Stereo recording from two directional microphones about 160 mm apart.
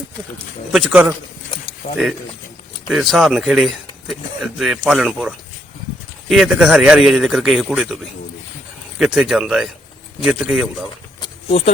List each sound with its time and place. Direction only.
0.7 s a man's voice: 10° right (ahead or behind)
1.8 s speech: 60° left (ahead or behind)
2.9 s a man's voice: centre (ahead or behind)
9.0 s a man's voice: 5° right (ahead or behind)
11.2 s a sound: 40° left (ahead or behind)